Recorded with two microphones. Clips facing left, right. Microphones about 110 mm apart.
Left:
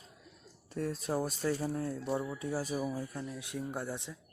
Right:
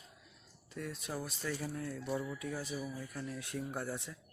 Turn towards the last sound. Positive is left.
turn(degrees=20)  # may be behind; listen again after turning